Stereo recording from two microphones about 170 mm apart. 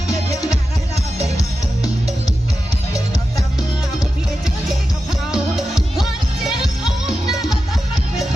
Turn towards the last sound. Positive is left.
turn(degrees=0)  # may be behind; listen again after turning